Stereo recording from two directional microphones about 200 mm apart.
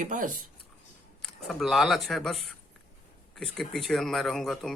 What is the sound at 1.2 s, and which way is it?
Speech, centre (ahead or behind).